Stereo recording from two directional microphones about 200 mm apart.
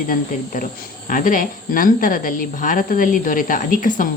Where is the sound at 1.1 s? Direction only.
45° left (ahead or behind).